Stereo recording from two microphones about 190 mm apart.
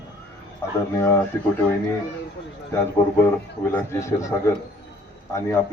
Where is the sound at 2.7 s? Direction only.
15° left (ahead or behind).